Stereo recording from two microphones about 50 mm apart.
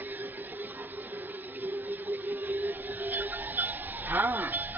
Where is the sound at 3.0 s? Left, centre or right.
Right.